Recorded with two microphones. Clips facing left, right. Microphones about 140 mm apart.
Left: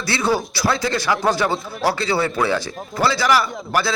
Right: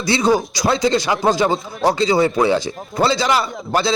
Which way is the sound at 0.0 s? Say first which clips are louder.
Right 4 dB; 15° right (ahead or behind).